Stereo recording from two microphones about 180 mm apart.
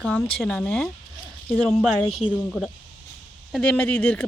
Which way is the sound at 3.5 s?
5° left (ahead or behind).